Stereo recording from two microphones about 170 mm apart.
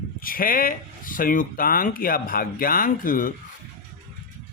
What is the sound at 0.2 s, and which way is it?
Speech, 55° left (ahead or behind).